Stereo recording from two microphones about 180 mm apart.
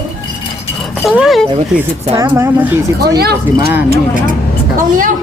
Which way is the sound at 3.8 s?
50° right (ahead or behind).